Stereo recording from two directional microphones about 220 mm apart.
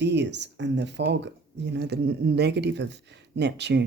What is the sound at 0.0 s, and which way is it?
Speech, 50° right (ahead or behind).